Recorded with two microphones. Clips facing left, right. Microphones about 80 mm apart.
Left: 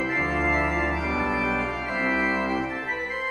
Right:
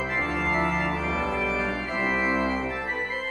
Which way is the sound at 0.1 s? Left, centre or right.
Centre.